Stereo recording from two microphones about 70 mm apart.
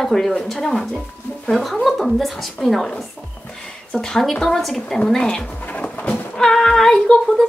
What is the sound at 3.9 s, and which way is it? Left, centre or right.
Speech, centre.